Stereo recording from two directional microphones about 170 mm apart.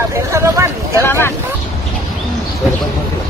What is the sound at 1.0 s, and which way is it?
Vehicle, 15° left (ahead or behind).